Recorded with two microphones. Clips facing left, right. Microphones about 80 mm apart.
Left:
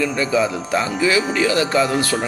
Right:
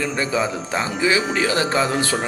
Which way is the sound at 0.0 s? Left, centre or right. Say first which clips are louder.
Left 3 dB; right.